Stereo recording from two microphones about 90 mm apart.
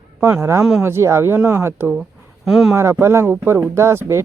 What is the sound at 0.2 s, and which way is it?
Speech, 30° right (ahead or behind).